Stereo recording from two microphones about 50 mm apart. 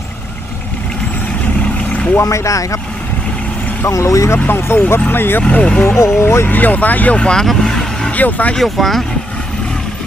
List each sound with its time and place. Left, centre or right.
2.3 s speech: left
3.8 s speech: left
4.4 s speech: left
5.4 s speech: left
6.0 s speech: left
6.5 s speech: left
7.2 s speech: centre
7.4 s vehicle: centre
8.1 s speech: left
8.5 s speech: centre